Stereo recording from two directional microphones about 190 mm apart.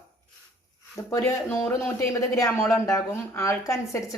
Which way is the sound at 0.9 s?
15° left (ahead or behind).